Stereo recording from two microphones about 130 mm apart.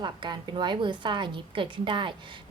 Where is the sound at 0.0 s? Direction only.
40° right (ahead or behind).